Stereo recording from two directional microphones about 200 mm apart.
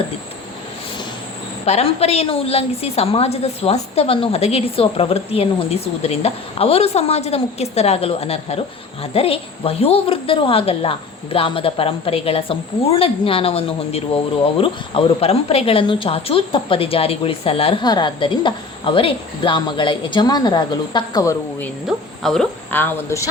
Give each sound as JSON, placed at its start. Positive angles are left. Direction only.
{"t": 1.6, "sound": "a woman's voice", "side_deg": 30}
{"t": 21.8, "sound": "speech", "side_deg": 0}